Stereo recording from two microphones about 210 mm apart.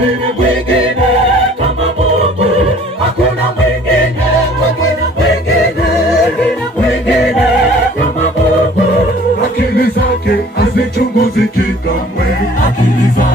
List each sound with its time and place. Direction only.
10.6 s music: 50° left (ahead or behind)